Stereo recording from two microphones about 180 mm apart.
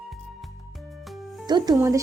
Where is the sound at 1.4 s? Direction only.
25° right (ahead or behind).